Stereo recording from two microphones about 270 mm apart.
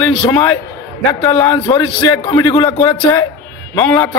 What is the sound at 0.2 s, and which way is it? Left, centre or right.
A man's voice, centre.